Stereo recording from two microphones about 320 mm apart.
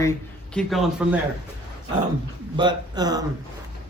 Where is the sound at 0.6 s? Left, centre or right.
Centre.